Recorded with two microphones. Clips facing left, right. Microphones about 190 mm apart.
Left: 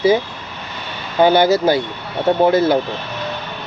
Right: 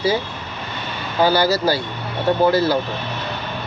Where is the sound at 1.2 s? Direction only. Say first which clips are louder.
Left 4 dB; 20° left (ahead or behind).